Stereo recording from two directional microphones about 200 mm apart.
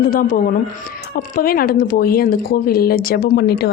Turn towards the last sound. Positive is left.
turn(degrees=50)  # may be behind; listen again after turning